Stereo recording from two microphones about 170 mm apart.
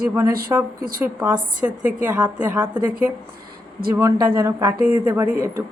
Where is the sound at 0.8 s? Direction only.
55° right (ahead or behind).